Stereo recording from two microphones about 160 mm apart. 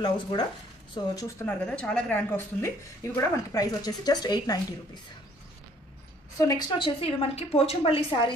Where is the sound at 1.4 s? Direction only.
10° left (ahead or behind); by 4.6 s 25° left (ahead or behind).